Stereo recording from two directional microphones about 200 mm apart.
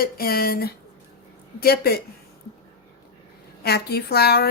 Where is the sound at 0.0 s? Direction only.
50° left (ahead or behind).